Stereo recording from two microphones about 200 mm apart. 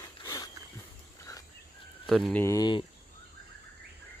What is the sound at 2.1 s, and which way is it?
Speech, centre (ahead or behind).